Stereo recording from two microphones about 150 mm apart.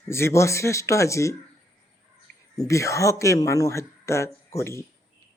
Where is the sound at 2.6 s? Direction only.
20° left (ahead or behind).